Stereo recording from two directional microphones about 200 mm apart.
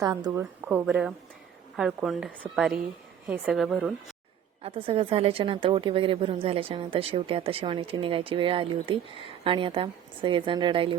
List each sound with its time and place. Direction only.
0.0 s a woman's voice: 15° right (ahead or behind)
4.6 s a woman's voice: 30° right (ahead or behind)